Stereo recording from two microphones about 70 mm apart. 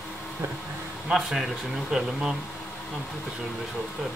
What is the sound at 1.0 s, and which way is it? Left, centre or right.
Speech, centre.